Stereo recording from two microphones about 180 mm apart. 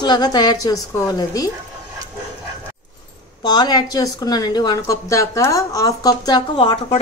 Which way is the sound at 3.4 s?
25° left (ahead or behind).